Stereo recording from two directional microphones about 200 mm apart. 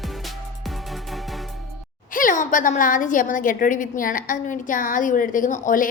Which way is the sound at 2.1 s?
40° left (ahead or behind).